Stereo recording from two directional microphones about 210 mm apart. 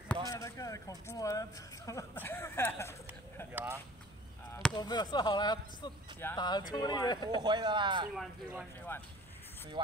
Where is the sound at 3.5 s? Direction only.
10° right (ahead or behind).